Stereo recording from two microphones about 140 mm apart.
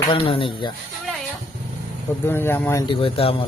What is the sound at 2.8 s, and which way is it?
Speech, 40° left (ahead or behind).